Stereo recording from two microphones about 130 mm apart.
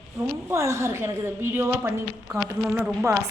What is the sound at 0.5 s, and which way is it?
A woman's voice, 20° right (ahead or behind).